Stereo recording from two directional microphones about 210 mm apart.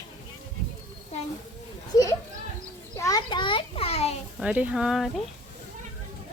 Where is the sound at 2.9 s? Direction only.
15° left (ahead or behind).